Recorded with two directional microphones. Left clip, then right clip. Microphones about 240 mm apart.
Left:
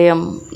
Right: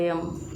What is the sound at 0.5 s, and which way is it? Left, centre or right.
Music, left.